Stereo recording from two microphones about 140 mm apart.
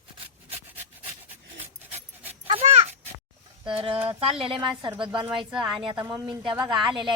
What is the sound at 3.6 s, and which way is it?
A woman's voice, 40° right (ahead or behind).